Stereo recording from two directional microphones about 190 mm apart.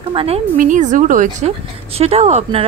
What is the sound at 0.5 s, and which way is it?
A woman's voice, 40° right (ahead or behind).